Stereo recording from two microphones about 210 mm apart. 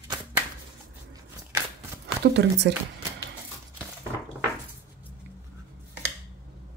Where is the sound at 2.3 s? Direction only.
55° right (ahead or behind).